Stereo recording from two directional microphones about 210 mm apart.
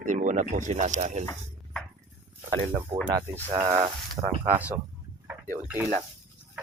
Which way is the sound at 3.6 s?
20° right (ahead or behind).